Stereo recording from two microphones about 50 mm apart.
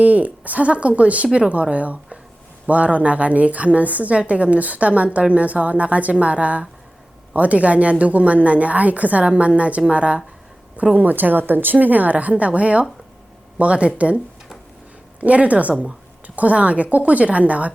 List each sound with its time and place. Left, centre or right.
0.0 s a woman's voice: right
10.9 s a woman's voice: right
15.2 s a woman's voice: right